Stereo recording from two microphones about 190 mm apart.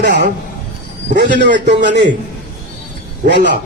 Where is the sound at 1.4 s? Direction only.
65° right (ahead or behind).